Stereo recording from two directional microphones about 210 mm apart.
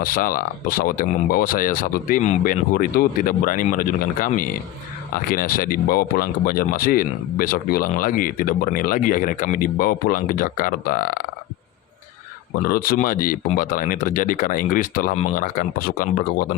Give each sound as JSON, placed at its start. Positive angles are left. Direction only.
{"t": 0.0, "sound": "speech", "side_deg": 40}
{"t": 12.6, "sound": "speech", "side_deg": 45}